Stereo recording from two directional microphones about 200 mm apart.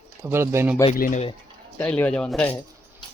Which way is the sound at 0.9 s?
45° left (ahead or behind).